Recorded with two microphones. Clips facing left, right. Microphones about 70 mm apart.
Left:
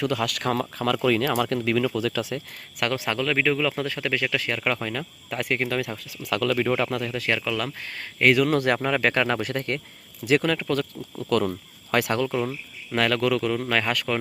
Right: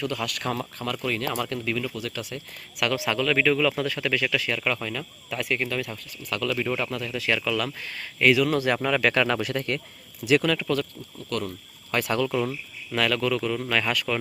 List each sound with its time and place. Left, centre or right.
0.0 s speech: left
2.3 s speech: left
2.8 s speech: left
7.3 s speech: left
8.2 s speech: left
8.8 s speech: left
11.4 s speech: left
12.1 s speech: left
13.0 s speech: left
13.6 s speech: left